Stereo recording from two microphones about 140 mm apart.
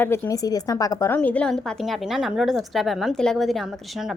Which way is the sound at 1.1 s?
10° left (ahead or behind).